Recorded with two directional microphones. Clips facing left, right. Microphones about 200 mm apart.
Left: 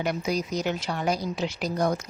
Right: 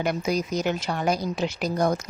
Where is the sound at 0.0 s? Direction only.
50° right (ahead or behind).